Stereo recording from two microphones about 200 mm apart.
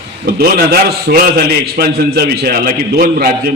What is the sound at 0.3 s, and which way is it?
A man's voice, 50° right (ahead or behind).